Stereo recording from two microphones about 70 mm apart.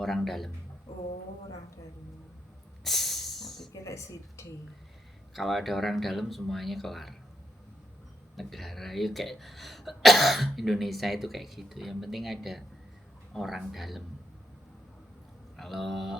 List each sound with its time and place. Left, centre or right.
0.0 s speech: centre
2.8 s hiss: centre
3.7 s a woman's voice: left
5.3 s speech: centre
8.4 s speech: centre
15.5 s speech: centre